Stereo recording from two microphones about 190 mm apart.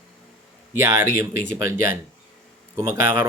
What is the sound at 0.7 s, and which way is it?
Speech, 15° right (ahead or behind).